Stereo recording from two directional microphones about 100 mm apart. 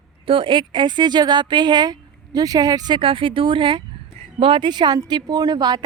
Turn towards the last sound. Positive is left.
turn(degrees=-45)  # may be behind; listen again after turning